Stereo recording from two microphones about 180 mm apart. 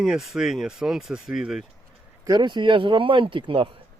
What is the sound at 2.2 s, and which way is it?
Speech, 25° right (ahead or behind).